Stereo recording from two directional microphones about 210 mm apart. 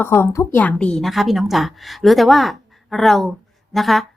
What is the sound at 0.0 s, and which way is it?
A woman's voice, 10° left (ahead or behind).